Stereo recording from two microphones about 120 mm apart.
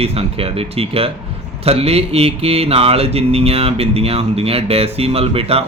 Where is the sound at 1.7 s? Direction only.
55° right (ahead or behind).